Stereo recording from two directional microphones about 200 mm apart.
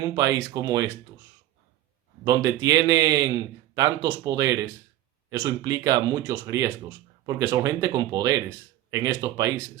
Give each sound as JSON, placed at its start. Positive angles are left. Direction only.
{"t": 0.0, "sound": "a man's voice", "side_deg": -15}
{"t": 2.2, "sound": "a man's voice", "side_deg": -15}